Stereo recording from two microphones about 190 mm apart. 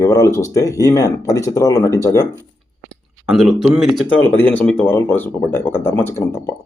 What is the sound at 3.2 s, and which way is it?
Speech, centre (ahead or behind).